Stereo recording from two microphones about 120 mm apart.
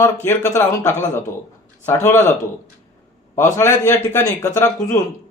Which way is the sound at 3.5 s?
20° left (ahead or behind).